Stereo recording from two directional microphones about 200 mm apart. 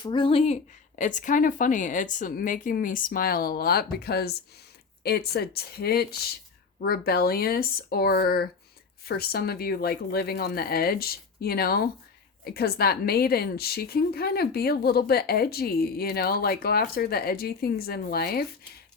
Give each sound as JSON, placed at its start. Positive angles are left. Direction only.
{"t": 0.0, "sound": "a woman's voice", "side_deg": 25}